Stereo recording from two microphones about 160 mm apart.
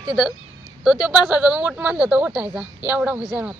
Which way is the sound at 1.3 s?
10° right (ahead or behind).